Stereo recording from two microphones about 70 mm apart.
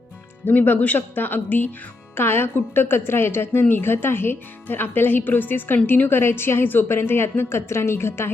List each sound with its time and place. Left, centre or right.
0.4 s a woman's voice: left